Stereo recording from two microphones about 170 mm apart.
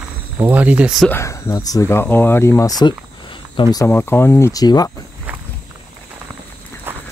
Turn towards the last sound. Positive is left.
turn(degrees=-10)  # may be behind; listen again after turning